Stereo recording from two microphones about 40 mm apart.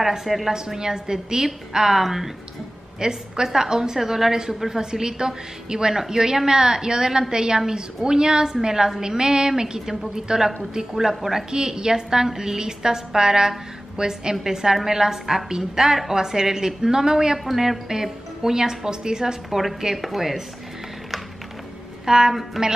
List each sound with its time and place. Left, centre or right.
0.0 s a woman's voice: centre
0.5 s a woman's voice: centre
3.0 s a woman's voice: centre
19.5 s a woman's voice: centre
22.0 s a woman's voice: centre